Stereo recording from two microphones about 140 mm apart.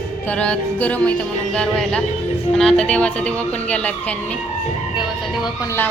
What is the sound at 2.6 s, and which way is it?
Music, 5° left (ahead or behind).